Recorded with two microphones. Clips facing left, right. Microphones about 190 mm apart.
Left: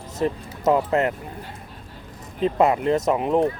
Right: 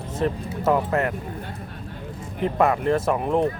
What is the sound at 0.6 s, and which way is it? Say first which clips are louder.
Speech: left 2 dB; 20° left (ahead or behind).